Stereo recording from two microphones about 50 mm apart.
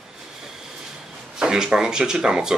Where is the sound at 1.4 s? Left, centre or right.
Centre.